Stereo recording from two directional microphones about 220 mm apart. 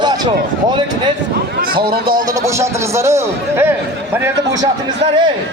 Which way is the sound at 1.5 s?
45° right (ahead or behind).